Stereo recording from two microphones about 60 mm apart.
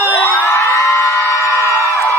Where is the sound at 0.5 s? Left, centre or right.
Left.